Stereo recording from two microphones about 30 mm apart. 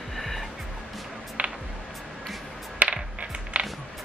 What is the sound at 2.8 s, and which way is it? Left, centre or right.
Music, right.